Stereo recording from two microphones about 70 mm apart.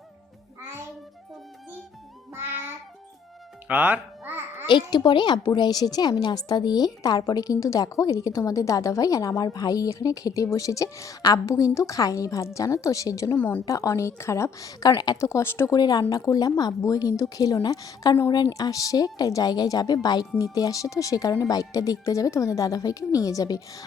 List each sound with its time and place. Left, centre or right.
3.7 s babbling: right
4.6 s speech: left
6.2 s a woman's voice: left
13.3 s speech: left
13.7 s a woman's voice: left
14.2 s a woman's voice: left
14.6 s a woman's voice: left
15.2 s speech: left
15.7 s a woman's voice: left
18.3 s a woman's voice: left
20.4 s a woman's voice: left